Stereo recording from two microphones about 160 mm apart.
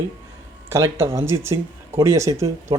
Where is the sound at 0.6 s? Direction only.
15° right (ahead or behind).